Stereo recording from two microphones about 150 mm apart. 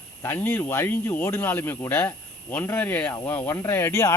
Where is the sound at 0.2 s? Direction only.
15° left (ahead or behind).